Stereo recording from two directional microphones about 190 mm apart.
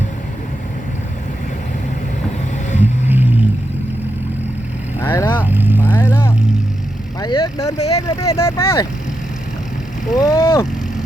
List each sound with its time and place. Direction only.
2.8 s vehicle: 10° right (ahead or behind)
4.9 s vehicle: 10° left (ahead or behind)
5.4 s vehicle: 10° right (ahead or behind)
5.8 s vehicle: 10° left (ahead or behind)
10.2 s vehicle: 15° left (ahead or behind)